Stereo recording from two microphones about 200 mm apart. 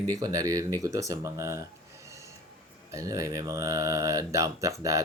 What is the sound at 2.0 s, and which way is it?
Snort, 15° right (ahead or behind).